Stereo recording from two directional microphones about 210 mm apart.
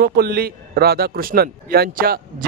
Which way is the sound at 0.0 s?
50° right (ahead or behind).